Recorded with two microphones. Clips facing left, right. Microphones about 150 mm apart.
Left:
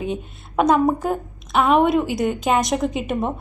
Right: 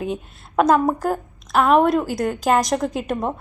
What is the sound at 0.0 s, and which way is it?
Speech, centre (ahead or behind).